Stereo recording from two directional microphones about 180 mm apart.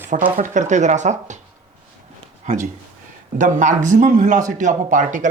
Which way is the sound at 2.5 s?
45° right (ahead or behind).